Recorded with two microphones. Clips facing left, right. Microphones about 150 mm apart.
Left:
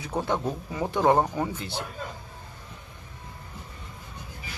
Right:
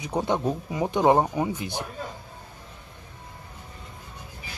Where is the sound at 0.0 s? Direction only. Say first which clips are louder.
Right 2 dB; 20° right (ahead or behind).